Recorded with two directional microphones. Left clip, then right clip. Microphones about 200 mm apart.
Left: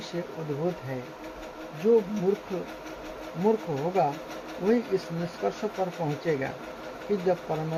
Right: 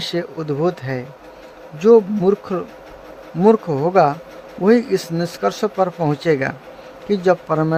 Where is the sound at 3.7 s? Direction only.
45° right (ahead or behind).